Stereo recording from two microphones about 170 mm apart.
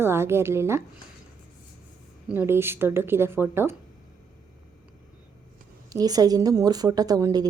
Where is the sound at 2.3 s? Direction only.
15° right (ahead or behind).